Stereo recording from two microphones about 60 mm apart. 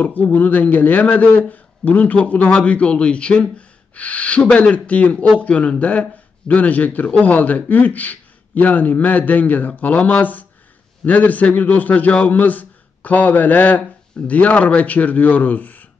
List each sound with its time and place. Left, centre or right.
0.0 s speech: left